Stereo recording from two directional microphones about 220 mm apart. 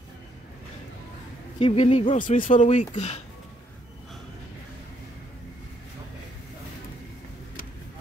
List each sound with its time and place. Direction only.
1.6 s speech: 25° left (ahead or behind)
2.1 s speech: 35° left (ahead or behind)